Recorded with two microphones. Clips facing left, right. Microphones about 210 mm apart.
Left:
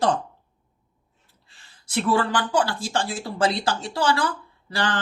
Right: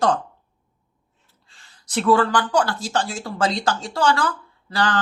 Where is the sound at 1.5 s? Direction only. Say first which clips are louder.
Right 2 dB; 25° left (ahead or behind).